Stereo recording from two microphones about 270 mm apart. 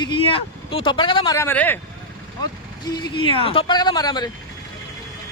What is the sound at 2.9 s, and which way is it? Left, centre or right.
Speech, centre.